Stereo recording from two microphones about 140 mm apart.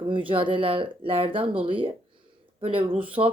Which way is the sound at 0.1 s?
40° right (ahead or behind).